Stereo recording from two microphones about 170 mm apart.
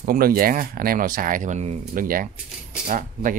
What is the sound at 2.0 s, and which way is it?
Speech, 55° right (ahead or behind).